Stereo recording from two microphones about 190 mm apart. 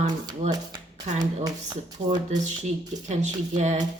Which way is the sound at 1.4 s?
20° right (ahead or behind).